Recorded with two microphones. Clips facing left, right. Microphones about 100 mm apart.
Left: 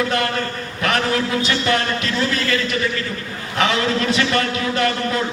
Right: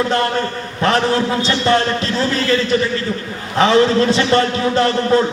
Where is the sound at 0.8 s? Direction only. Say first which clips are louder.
Right 5 dB; 30° right (ahead or behind).